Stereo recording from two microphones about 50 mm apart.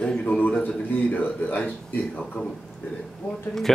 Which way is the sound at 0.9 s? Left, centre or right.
Left.